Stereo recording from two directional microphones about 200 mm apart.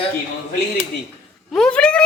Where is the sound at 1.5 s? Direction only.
5° left (ahead or behind).